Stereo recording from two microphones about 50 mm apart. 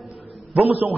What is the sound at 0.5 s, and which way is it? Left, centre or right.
Speech, right.